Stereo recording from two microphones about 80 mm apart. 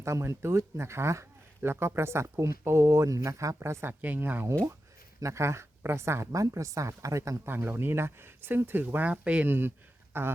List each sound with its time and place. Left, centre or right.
0.0 s speech: right
4.0 s speech: right
5.2 s speech: right
7.4 s speech: right